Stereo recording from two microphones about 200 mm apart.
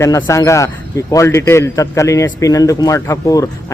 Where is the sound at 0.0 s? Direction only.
15° left (ahead or behind).